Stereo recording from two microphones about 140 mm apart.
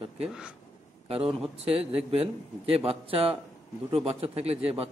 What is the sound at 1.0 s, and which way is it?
A man's voice, 45° right (ahead or behind).